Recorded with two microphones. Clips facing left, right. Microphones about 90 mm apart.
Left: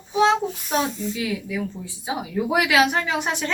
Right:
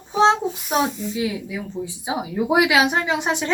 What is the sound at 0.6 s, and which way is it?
Speech, 20° right (ahead or behind).